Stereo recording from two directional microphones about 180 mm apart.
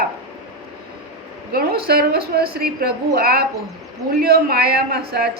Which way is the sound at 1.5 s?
60° right (ahead or behind).